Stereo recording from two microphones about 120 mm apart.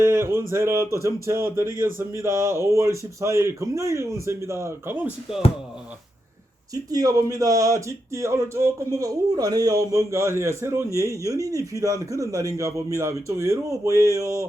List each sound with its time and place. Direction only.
0.0 s speech: 20° right (ahead or behind)
6.9 s speech: 30° right (ahead or behind)